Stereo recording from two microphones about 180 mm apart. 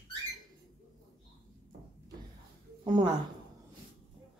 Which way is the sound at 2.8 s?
25° right (ahead or behind).